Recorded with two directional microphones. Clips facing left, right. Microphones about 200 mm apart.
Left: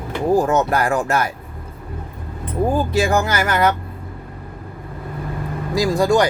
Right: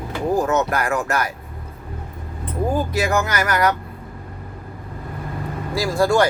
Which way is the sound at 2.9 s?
30° left (ahead or behind).